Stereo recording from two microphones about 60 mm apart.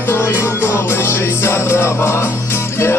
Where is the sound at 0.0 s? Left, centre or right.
Left.